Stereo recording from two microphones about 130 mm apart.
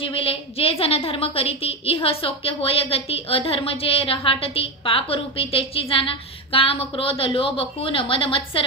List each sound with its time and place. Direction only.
0.0 s a woman's voice: 45° left (ahead or behind)